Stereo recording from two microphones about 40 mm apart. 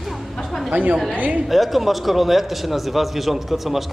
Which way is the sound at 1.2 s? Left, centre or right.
Right.